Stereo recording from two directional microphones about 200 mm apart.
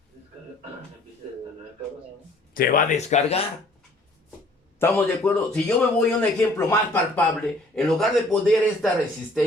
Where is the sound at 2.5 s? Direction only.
45° left (ahead or behind).